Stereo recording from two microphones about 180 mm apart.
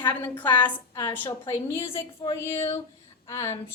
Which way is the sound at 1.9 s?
30° left (ahead or behind).